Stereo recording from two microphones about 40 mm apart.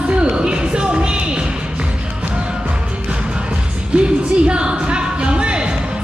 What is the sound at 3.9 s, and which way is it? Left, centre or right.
Music, right.